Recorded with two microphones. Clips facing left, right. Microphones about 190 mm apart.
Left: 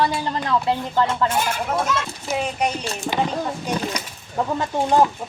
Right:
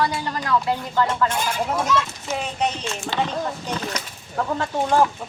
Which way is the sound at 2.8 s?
35° left (ahead or behind).